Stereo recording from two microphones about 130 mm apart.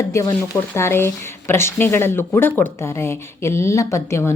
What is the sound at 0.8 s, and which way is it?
Speech, 20° left (ahead or behind).